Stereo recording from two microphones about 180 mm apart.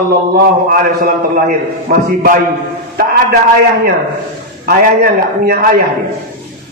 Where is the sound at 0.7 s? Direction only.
55° right (ahead or behind).